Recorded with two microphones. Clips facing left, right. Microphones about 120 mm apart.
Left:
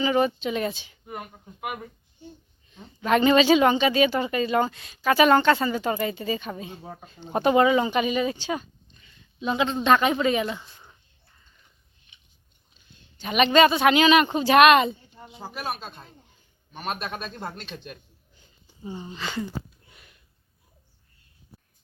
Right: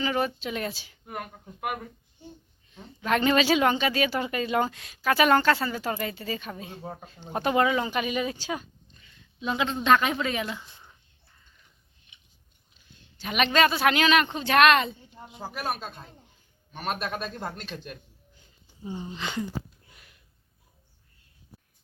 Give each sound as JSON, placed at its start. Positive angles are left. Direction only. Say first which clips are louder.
{"t": 0.0, "sound": "speech", "louder": "left 5 dB", "side_deg": 5}
{"t": 2.7, "sound": "speech", "louder": "left 4 dB", "side_deg": 0}
{"t": 13.1, "sound": "a woman's voice", "louder": "left 5 dB", "side_deg": 0}
{"t": 15.4, "sound": "speech", "louder": "even", "side_deg": -10}
{"t": 16.7, "sound": "speech", "louder": "right 1 dB", "side_deg": 0}
{"t": 19.1, "sound": "speech", "louder": "left 1 dB", "side_deg": -10}